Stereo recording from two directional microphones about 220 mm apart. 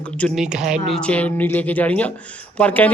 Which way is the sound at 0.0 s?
5° left (ahead or behind).